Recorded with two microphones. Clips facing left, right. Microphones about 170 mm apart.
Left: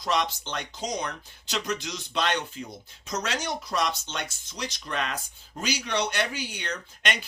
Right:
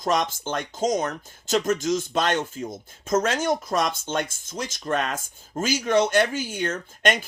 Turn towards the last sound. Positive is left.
turn(degrees=-45)  # may be behind; listen again after turning